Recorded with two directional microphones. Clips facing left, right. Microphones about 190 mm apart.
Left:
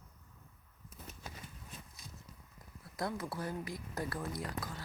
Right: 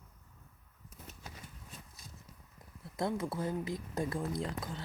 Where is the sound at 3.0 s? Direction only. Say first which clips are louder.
Right 4 dB; 25° right (ahead or behind).